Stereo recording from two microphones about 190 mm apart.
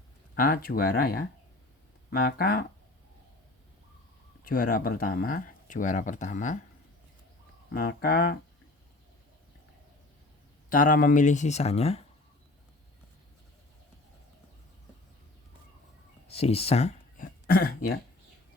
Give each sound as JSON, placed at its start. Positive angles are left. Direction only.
{"t": 0.3, "sound": "speech", "side_deg": 50}
{"t": 4.4, "sound": "speech", "side_deg": 50}
{"t": 7.7, "sound": "speech", "side_deg": 50}
{"t": 10.7, "sound": "speech", "side_deg": 45}
{"t": 16.2, "sound": "a sound", "side_deg": 30}
{"t": 17.4, "sound": "speech", "side_deg": 50}